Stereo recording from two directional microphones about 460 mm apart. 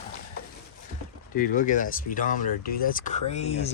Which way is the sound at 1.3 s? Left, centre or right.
Centre.